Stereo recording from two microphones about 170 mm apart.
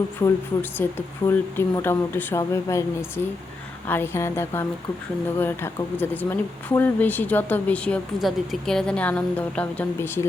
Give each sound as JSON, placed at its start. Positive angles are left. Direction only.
{"t": 0.2, "sound": "speech", "side_deg": 10}